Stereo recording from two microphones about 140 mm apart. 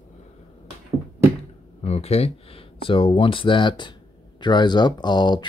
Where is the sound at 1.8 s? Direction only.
50° left (ahead or behind).